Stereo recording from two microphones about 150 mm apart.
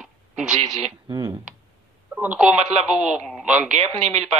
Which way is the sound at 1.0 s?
25° right (ahead or behind).